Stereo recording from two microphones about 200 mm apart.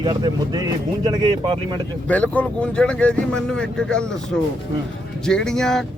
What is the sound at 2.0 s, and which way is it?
Speech, 5° left (ahead or behind).